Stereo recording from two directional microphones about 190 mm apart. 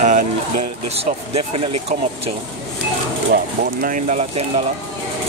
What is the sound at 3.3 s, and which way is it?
Speech, 50° right (ahead or behind).